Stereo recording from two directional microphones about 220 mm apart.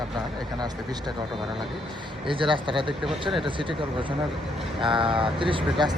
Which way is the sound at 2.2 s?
25° right (ahead or behind).